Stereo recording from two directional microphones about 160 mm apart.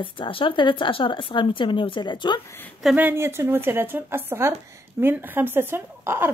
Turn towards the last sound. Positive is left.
turn(degrees=-15)  # may be behind; listen again after turning